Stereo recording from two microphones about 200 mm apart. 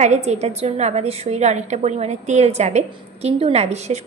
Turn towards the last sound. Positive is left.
turn(degrees=-35)  # may be behind; listen again after turning